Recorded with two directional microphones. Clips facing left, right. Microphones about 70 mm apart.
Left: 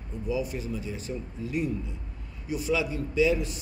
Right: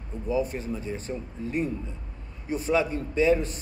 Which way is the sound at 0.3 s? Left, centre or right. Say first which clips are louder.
Right 3 dB; right.